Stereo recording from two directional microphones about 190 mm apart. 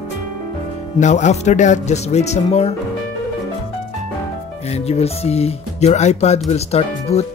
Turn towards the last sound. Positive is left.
turn(degrees=35)  # may be behind; listen again after turning